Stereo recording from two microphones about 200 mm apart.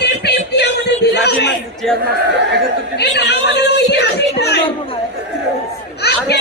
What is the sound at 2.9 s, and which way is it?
Speech, 60° left (ahead or behind).